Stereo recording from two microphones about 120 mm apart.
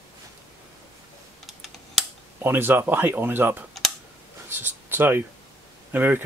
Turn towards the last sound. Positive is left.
turn(degrees=-15)  # may be behind; listen again after turning